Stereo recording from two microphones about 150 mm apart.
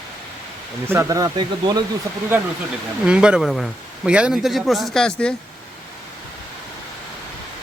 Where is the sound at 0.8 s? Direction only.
15° right (ahead or behind).